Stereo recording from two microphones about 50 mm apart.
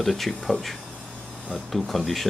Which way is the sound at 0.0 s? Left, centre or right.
Centre.